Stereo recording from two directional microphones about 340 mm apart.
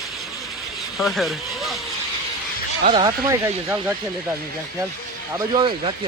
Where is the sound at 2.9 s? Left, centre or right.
Centre.